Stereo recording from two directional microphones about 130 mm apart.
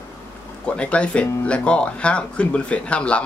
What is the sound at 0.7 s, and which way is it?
Speech, 10° left (ahead or behind).